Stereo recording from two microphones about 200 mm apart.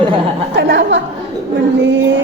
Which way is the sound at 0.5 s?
55° right (ahead or behind).